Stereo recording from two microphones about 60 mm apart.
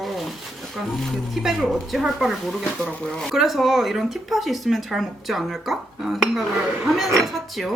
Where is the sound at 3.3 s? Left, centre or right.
Centre.